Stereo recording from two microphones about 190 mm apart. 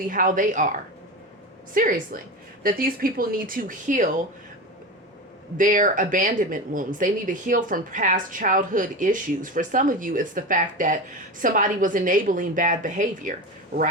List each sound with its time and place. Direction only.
0.1 s speech: 45° right (ahead or behind)
5.5 s speech: 45° right (ahead or behind)